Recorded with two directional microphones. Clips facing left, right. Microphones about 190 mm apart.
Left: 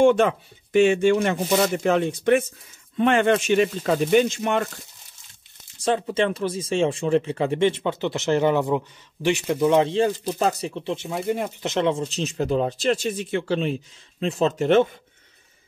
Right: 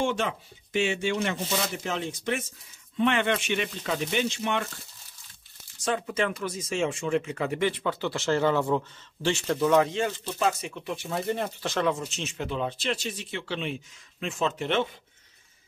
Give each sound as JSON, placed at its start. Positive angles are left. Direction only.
{"t": 0.0, "sound": "speech", "side_deg": 55}
{"t": 3.0, "sound": "speech", "side_deg": 45}
{"t": 5.9, "sound": "speech", "side_deg": 30}
{"t": 9.8, "sound": "speech", "side_deg": 35}
{"t": 11.1, "sound": "speech", "side_deg": 10}
{"t": 11.6, "sound": "speech", "side_deg": 25}